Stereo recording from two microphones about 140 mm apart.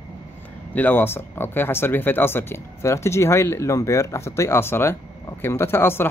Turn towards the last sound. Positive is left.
turn(degrees=15)  # may be behind; listen again after turning